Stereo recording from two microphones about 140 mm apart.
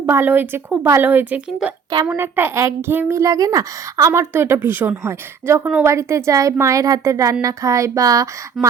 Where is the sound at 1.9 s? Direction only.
25° right (ahead or behind).